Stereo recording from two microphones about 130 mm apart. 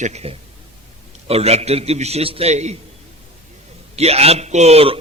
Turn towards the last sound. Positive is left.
turn(degrees=-50)  # may be behind; listen again after turning